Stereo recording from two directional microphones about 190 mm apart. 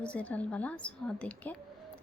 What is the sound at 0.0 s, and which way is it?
A woman's voice, 5° left (ahead or behind).